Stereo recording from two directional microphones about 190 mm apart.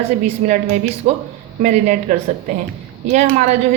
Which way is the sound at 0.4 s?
40° right (ahead or behind).